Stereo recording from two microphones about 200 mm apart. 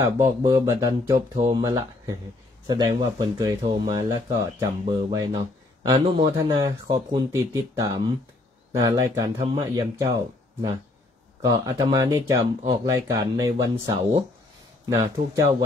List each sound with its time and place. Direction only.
0.0 s speech: 15° right (ahead or behind)